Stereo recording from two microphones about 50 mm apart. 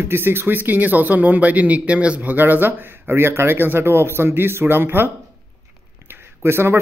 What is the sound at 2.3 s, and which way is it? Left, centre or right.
A man's voice, right.